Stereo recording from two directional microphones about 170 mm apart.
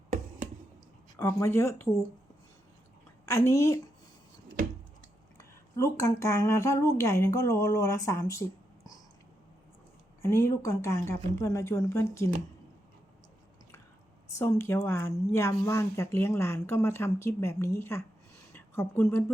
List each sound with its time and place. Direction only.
1.1 s a woman's voice: 15° left (ahead or behind)
3.2 s a woman's voice: 15° left (ahead or behind)
5.4 s a woman's voice: 15° left (ahead or behind)
10.2 s a woman's voice: 15° left (ahead or behind)
14.3 s a woman's voice: 20° left (ahead or behind)